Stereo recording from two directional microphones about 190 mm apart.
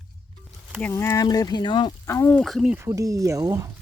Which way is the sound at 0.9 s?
15° left (ahead or behind).